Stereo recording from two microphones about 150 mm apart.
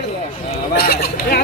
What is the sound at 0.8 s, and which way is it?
Speech, 90° left.